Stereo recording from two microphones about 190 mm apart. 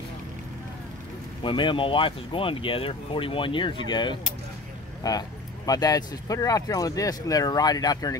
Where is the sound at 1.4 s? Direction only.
25° left (ahead or behind).